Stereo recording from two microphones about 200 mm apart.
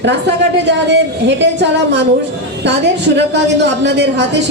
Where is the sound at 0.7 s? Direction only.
60° right (ahead or behind).